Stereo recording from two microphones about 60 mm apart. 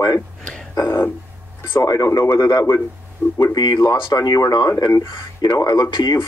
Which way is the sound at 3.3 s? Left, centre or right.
Left.